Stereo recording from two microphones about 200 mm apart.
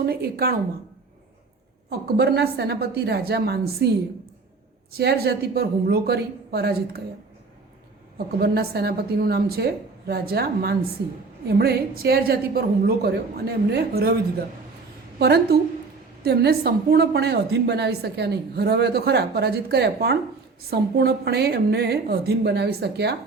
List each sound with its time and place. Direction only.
0.0 s a woman's voice: 50° right (ahead or behind)
1.9 s a woman's voice: 55° right (ahead or behind)
4.9 s a woman's voice: 50° right (ahead or behind)
8.4 s a woman's voice: 55° right (ahead or behind)
15.2 s a woman's voice: 55° right (ahead or behind)